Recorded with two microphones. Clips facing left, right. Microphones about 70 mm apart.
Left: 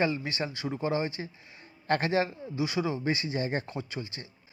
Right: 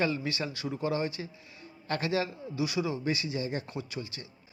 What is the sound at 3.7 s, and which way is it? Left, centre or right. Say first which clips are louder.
Speech: left 1 dB; left.